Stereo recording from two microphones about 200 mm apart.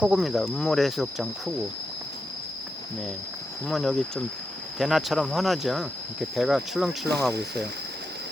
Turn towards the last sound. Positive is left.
turn(degrees=-55)  # may be behind; listen again after turning